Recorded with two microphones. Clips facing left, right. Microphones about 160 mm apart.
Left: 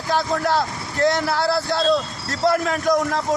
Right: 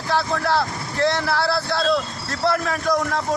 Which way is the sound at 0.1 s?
15° left (ahead or behind).